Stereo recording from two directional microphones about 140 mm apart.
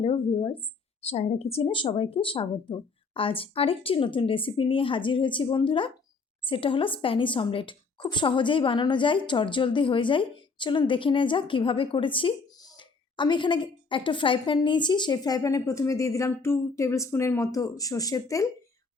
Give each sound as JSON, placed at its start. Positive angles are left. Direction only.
{"t": 0.0, "sound": "a woman's voice", "side_deg": 40}